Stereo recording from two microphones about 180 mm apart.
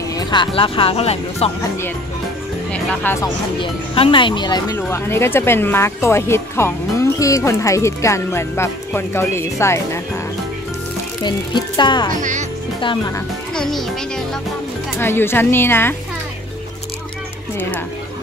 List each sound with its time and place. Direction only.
0.1 s speech: 25° left (ahead or behind)
2.7 s speech: 10° left (ahead or behind)
3.6 s speech: 30° left (ahead or behind)
11.2 s speech: 25° left (ahead or behind)
12.1 s speech: 45° right (ahead or behind)
13.6 s a child's voice: 5° left (ahead or behind)
15.0 s speech: 15° left (ahead or behind)